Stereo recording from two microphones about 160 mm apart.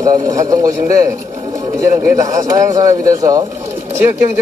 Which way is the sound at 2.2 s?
20° right (ahead or behind).